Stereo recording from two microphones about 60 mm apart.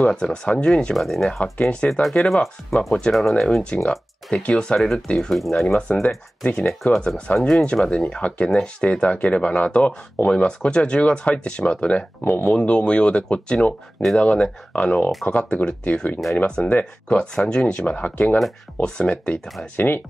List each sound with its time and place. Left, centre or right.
0.0 s speech: centre
0.9 s speech: centre
1.4 s speech: centre
1.9 s speech: centre
3.7 s speech: left
4.7 s speech: centre
6.0 s speech: left
7.3 s speech: centre
7.6 s speech: centre
12.2 s speech: left